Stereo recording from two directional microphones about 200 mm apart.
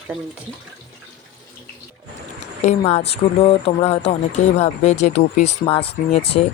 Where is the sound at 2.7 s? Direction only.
30° left (ahead or behind).